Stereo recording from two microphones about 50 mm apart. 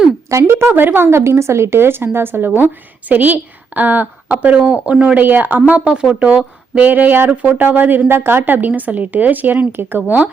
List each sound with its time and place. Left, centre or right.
0.3 s speech: right
0.7 s a woman's voice: right
1.0 s a woman's voice: right
3.1 s a woman's voice: right
5.1 s a woman's voice: right
5.9 s speech: centre
6.1 s a woman's voice: right